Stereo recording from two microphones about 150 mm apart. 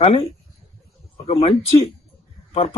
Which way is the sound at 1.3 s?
40° left (ahead or behind).